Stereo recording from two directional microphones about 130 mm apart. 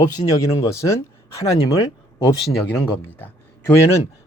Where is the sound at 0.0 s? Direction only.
30° left (ahead or behind).